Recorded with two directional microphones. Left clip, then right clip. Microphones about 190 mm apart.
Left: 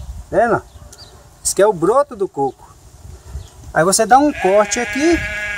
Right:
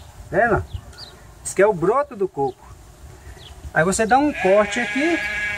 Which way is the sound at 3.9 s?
35° left (ahead or behind).